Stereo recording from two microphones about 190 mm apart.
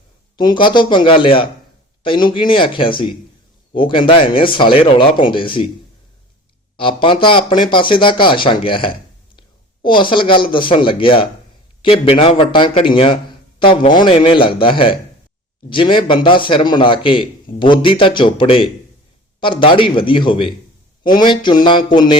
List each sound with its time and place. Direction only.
0.3 s a man's voice: 25° left (ahead or behind)
6.7 s a man's voice: 25° left (ahead or behind)